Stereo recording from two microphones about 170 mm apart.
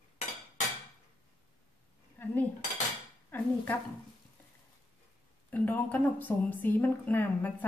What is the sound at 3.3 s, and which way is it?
Speech, 10° left (ahead or behind).